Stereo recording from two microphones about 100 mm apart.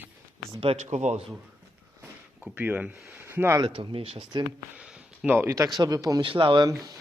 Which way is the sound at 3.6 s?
60° right (ahead or behind).